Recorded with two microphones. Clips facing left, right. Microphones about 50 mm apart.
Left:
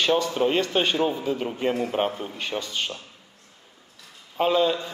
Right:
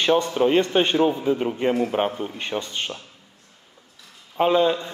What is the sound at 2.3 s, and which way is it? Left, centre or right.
Speech, right.